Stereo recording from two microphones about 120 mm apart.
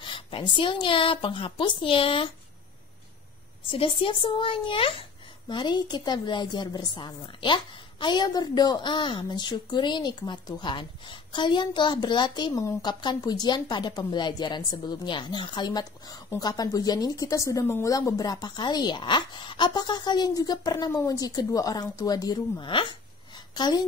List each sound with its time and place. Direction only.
0.0 s a woman's voice: 45° left (ahead or behind)
3.7 s a woman's voice: 45° left (ahead or behind)